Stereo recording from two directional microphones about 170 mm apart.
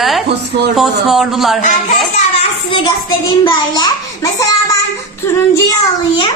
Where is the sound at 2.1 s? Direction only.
35° left (ahead or behind).